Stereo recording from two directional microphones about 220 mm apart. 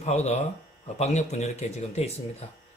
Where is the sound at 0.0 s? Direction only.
30° left (ahead or behind).